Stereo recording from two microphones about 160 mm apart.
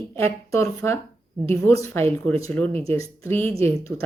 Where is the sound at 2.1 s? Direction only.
15° left (ahead or behind).